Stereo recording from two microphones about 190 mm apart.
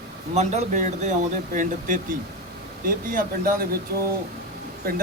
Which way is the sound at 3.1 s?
50° right (ahead or behind).